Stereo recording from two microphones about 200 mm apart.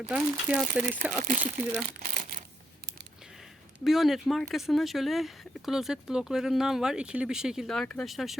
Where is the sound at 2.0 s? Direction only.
45° right (ahead or behind).